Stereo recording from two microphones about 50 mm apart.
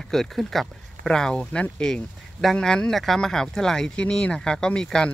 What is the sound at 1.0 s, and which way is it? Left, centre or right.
Speech, centre.